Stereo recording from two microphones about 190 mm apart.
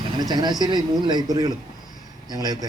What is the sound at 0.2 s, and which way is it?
A man's voice, 20° right (ahead or behind).